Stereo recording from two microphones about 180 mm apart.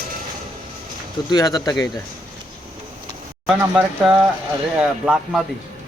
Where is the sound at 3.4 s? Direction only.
5° right (ahead or behind).